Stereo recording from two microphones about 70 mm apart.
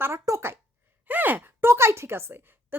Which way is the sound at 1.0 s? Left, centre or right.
Right.